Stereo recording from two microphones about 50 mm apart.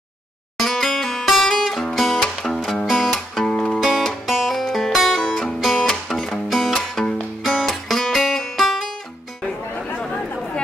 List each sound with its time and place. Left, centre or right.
0.6 s music: centre
3.4 s music: centre
3.8 s music: centre
7.4 s guitar: centre
9.9 s chatter: centre